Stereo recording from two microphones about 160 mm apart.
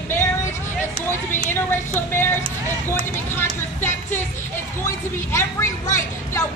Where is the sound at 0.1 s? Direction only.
15° left (ahead or behind).